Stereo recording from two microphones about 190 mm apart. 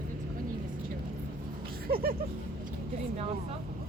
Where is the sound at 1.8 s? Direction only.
50° right (ahead or behind).